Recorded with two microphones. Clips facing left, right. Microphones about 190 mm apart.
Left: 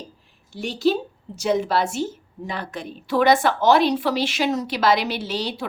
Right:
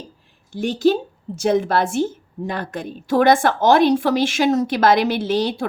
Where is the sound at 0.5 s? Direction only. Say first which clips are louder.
Right 4 dB; 50° right (ahead or behind).